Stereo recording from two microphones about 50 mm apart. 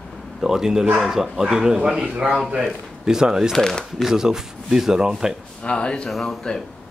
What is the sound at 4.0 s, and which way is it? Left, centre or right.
Speech, centre.